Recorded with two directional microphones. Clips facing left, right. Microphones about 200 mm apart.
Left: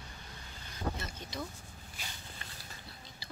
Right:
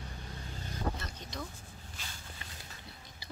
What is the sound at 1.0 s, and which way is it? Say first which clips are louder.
Speech: left 1 dB; 5° left (ahead or behind).